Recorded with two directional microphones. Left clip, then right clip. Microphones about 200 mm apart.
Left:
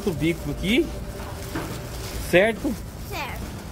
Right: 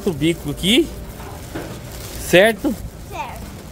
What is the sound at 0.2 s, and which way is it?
Speech, 25° right (ahead or behind).